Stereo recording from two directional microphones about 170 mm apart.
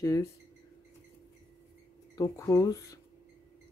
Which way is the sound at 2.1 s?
20° left (ahead or behind).